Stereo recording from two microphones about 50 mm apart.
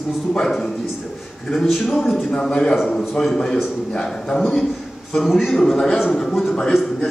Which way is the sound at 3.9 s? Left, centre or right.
Centre.